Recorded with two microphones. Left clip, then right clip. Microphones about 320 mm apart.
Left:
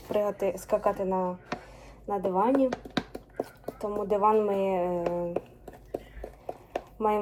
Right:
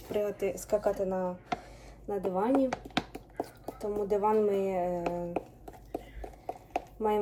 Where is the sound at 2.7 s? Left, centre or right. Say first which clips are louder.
Left 2 dB; centre.